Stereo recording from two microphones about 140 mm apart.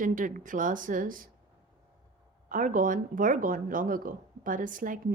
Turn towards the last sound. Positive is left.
turn(degrees=-70)  # may be behind; listen again after turning